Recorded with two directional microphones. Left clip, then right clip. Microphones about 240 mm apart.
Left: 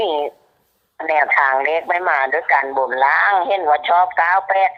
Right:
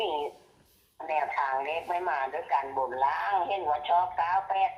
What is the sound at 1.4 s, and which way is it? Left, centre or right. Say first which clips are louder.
Speech: left 13 dB; left.